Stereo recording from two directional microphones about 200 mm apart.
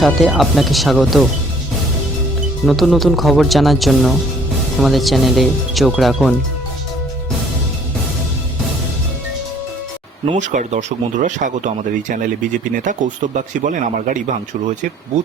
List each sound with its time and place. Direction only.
0.0 s speech: centre (ahead or behind)
2.6 s speech: centre (ahead or behind)
10.3 s speech: 40° right (ahead or behind)